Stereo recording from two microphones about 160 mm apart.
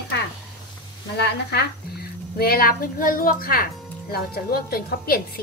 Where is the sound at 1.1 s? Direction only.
90° left.